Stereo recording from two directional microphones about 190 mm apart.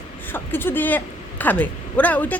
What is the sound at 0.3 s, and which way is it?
A woman's voice, 10° left (ahead or behind).